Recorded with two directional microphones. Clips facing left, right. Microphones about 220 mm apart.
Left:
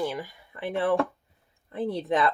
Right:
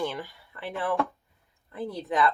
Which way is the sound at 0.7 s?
25° left (ahead or behind).